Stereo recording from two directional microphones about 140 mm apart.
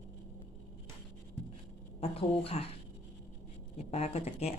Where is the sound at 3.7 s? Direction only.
50° left (ahead or behind).